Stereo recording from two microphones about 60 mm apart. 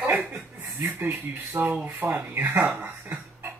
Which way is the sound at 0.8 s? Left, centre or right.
Right.